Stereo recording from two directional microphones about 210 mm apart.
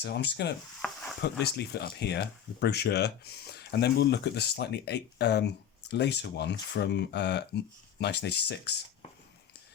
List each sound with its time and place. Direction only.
0.0 s speech: 55° left (ahead or behind)